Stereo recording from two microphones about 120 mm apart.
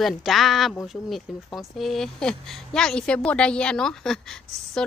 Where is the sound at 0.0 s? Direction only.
Centre (ahead or behind).